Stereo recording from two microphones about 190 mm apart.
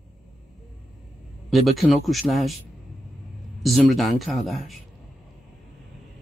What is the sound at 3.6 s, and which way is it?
Speech, centre (ahead or behind).